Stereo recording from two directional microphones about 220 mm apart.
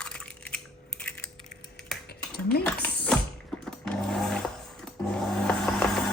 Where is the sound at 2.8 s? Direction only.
5° left (ahead or behind).